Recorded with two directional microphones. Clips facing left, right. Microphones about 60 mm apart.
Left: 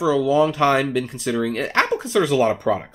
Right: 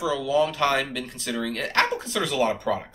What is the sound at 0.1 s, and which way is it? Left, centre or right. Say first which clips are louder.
Speech: left 6 dB; centre.